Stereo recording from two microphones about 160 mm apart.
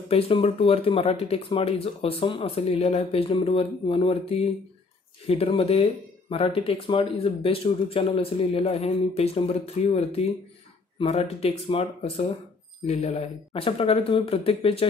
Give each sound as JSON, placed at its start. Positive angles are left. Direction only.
{"t": 0.1, "sound": "speech", "side_deg": 35}